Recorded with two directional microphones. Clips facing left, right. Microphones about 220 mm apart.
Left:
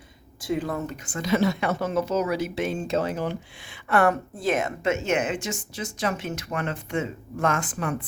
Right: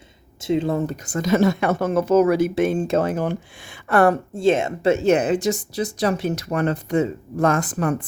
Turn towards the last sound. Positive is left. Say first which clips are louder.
# right 6 dB
turn(degrees=-40)  # may be behind; listen again after turning